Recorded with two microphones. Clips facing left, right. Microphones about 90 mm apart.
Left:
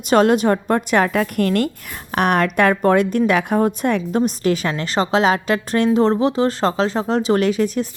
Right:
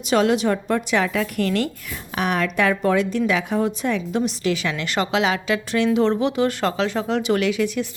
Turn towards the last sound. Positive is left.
turn(degrees=40)  # may be behind; listen again after turning